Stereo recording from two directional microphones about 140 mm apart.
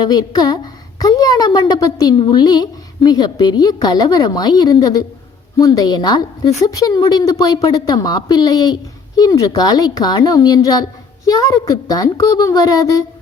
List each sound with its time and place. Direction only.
0.0 s a woman's voice: 30° left (ahead or behind)